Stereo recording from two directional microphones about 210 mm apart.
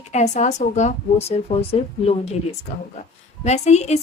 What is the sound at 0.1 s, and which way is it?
A woman's voice, 35° left (ahead or behind).